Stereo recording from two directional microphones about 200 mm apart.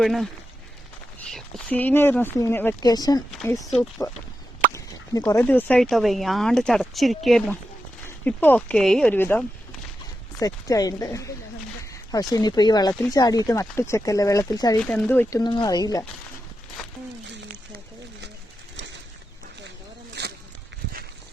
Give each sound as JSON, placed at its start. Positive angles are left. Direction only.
{"t": 0.0, "sound": "speech", "side_deg": 0}
{"t": 1.3, "sound": "speech", "side_deg": 0}
{"t": 10.4, "sound": "speech", "side_deg": 20}
{"t": 14.8, "sound": "speech", "side_deg": 5}
{"t": 17.2, "sound": "a sound", "side_deg": -60}